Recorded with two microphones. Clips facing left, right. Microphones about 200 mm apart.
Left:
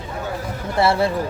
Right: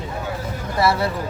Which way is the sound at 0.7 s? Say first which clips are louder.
Left 2 dB; 30° left (ahead or behind).